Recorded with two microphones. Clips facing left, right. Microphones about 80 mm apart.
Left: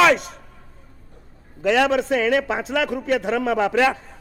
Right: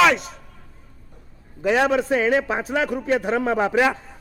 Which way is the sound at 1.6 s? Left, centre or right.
Centre.